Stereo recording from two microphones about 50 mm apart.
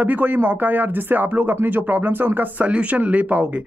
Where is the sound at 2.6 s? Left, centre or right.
Right.